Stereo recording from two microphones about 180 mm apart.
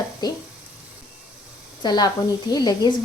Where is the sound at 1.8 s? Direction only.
25° left (ahead or behind).